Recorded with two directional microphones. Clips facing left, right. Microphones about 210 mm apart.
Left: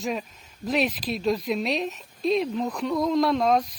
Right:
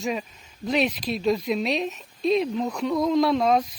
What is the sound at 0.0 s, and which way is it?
Speech, centre (ahead or behind).